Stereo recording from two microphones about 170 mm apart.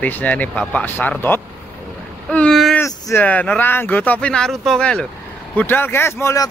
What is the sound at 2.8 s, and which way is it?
Speech, 15° left (ahead or behind).